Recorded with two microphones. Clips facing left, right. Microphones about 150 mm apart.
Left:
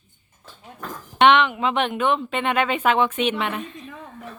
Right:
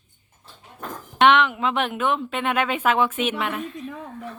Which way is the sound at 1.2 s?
Centre (ahead or behind).